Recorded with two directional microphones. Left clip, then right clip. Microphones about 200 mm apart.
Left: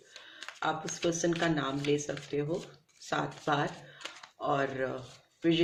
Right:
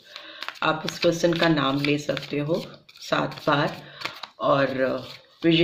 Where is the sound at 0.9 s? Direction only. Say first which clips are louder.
Right 10 dB; 20° right (ahead or behind).